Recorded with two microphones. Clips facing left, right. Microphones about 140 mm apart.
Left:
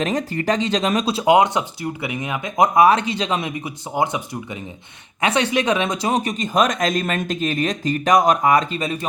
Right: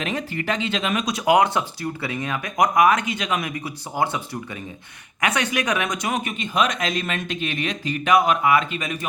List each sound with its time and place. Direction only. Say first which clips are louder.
0.0 s speech: left 5 dB; 40° left (ahead or behind); by 4.2 s 20° left (ahead or behind)
5.2 s speech: left 4 dB; 25° left (ahead or behind)